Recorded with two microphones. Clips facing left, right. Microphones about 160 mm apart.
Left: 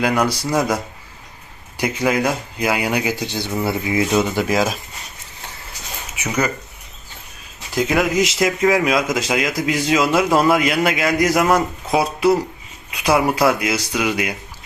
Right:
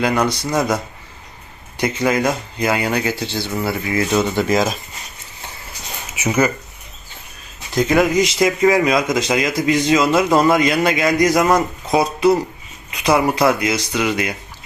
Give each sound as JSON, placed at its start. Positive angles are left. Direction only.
{"t": 0.0, "sound": "speech", "side_deg": 10}
{"t": 1.8, "sound": "speech", "side_deg": 5}
{"t": 7.7, "sound": "speech", "side_deg": 5}